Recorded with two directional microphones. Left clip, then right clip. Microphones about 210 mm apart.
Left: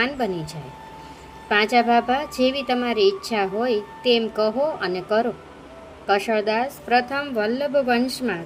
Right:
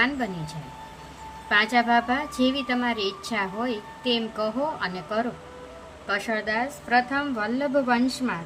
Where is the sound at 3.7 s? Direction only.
30° right (ahead or behind).